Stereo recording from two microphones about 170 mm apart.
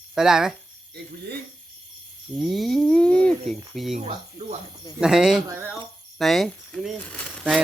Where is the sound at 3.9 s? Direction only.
40° right (ahead or behind).